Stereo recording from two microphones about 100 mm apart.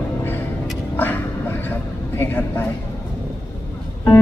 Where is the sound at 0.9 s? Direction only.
20° left (ahead or behind).